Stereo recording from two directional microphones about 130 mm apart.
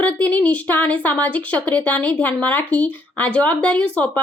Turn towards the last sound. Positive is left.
turn(degrees=10)  # may be behind; listen again after turning